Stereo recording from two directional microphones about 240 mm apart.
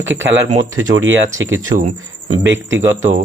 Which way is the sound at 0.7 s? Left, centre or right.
Right.